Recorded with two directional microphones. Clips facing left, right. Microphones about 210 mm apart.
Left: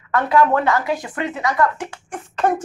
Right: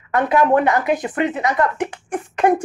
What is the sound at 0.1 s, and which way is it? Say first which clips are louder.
Speech: right 1 dB; 20° right (ahead or behind).